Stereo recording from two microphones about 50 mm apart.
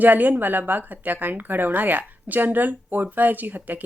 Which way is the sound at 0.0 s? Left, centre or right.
Right.